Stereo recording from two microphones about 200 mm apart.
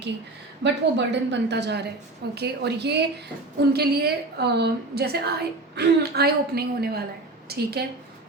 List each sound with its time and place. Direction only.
0.6 s a woman's voice: 60° right (ahead or behind)